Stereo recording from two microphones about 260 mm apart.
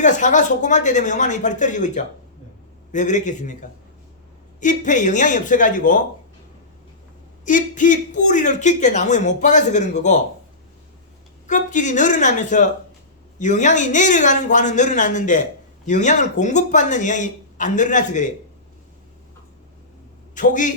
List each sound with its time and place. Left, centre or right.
0.0 s a man's voice: left
4.6 s a man's voice: left
7.4 s a man's voice: left
11.4 s a man's voice: left
20.3 s a man's voice: left